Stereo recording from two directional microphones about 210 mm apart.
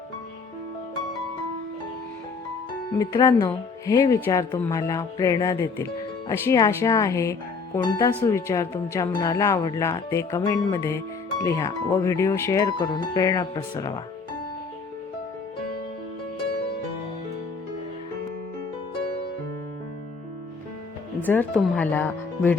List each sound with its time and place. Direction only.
3.0 s speech: 15° left (ahead or behind)
21.2 s speech: 5° left (ahead or behind)